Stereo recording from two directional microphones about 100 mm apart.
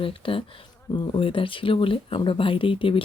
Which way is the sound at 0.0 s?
65° left (ahead or behind).